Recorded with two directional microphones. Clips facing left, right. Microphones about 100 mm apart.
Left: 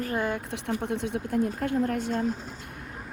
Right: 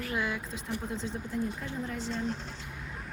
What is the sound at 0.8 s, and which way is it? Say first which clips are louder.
Speech: left 6 dB; 65° left (ahead or behind).